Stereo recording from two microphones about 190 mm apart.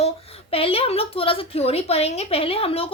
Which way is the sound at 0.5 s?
30° left (ahead or behind).